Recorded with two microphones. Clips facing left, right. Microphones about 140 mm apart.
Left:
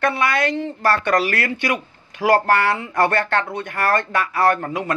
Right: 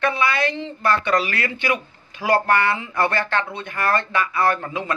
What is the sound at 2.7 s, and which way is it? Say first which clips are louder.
Speech: left 2 dB; 45° left (ahead or behind).